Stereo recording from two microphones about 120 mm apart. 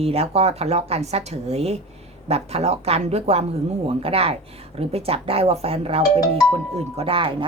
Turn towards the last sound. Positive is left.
turn(degrees=-50)  # may be behind; listen again after turning